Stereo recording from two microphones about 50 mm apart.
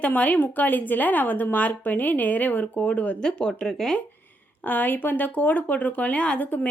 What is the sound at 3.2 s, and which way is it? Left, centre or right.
Speech, centre.